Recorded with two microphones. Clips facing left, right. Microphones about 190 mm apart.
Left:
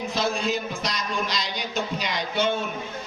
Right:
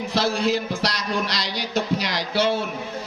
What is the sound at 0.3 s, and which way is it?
A man's voice, 75° right (ahead or behind).